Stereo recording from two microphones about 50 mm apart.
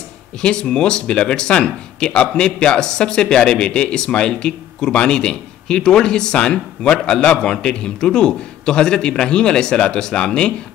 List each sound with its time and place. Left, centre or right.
0.4 s speech: centre